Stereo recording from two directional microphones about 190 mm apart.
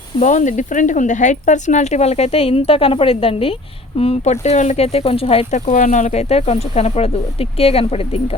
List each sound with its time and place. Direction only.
0.2 s speech: 40° left (ahead or behind)